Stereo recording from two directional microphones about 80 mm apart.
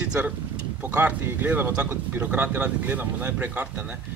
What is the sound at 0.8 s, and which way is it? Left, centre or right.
A man's voice, right.